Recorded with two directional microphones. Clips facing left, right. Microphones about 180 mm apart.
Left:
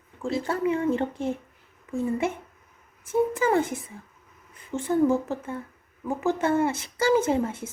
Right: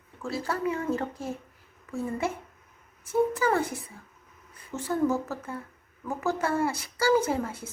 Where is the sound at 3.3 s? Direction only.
20° left (ahead or behind).